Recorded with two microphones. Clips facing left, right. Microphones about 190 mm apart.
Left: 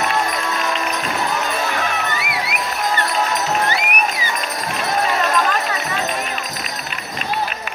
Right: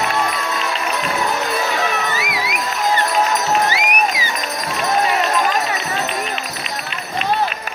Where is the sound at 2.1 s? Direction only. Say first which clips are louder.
Right 1 dB; 60° left (ahead or behind).